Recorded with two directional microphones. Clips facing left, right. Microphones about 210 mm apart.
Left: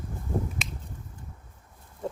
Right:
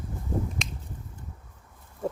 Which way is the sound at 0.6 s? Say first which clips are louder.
Right 2 dB; 5° left (ahead or behind).